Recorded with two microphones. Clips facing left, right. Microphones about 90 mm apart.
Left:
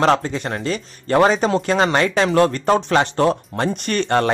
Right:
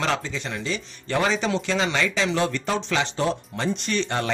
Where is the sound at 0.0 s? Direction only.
50° left (ahead or behind).